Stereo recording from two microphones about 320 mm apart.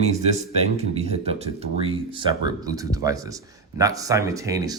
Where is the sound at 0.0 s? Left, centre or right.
Centre.